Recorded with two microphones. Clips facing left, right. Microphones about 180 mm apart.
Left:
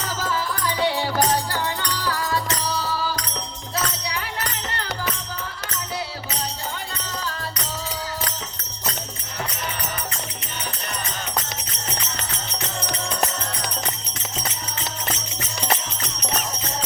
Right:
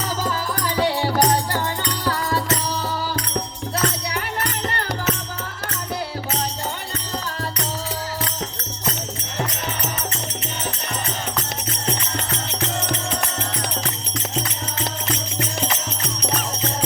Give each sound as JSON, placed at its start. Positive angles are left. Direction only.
{"t": 0.8, "sound": "music", "side_deg": -45}